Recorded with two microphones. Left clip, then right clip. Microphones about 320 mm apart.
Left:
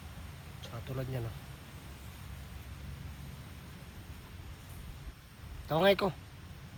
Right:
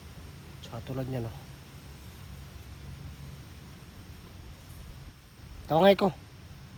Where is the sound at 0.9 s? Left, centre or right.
Right.